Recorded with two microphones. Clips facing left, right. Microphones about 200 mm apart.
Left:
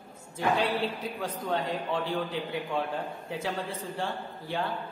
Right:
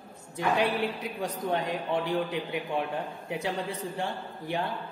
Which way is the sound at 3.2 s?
15° right (ahead or behind).